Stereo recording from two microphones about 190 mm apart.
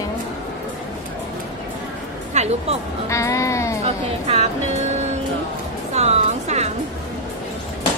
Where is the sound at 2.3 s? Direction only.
35° right (ahead or behind).